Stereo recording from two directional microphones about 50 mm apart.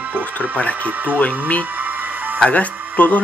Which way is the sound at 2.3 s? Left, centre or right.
Left.